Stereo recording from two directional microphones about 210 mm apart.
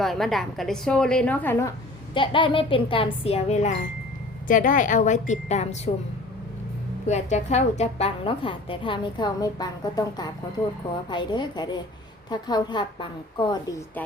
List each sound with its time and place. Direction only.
0.0 s a woman's voice: centre (ahead or behind)
2.1 s a woman's voice: 25° left (ahead or behind)
7.1 s a woman's voice: 35° left (ahead or behind)